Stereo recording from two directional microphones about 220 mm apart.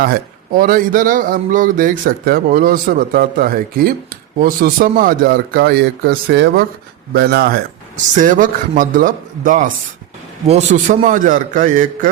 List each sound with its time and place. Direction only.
0.0 s a man's voice: 40° right (ahead or behind)